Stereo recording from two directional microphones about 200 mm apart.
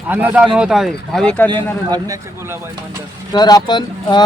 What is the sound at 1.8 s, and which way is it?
Speech, 20° right (ahead or behind).